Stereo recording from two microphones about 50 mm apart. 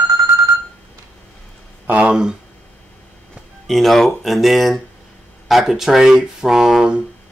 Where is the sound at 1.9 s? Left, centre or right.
Right.